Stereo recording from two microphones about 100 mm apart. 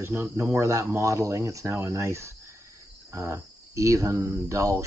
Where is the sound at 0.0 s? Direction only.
30° right (ahead or behind).